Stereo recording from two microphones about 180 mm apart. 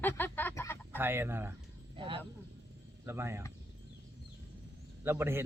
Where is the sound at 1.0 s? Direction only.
10° right (ahead or behind).